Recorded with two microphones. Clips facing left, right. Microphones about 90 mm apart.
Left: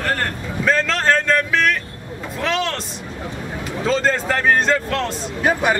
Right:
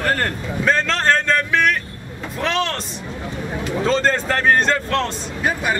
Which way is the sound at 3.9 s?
5° left (ahead or behind).